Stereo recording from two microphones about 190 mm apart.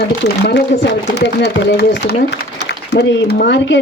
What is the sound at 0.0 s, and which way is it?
Speech, 65° left (ahead or behind).